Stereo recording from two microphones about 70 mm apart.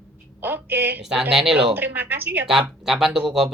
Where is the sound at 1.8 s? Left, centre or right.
Right.